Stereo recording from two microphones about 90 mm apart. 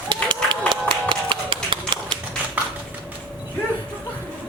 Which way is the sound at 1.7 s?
70° right (ahead or behind).